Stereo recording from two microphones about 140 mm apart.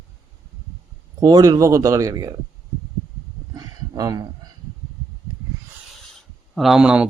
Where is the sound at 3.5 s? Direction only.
25° right (ahead or behind).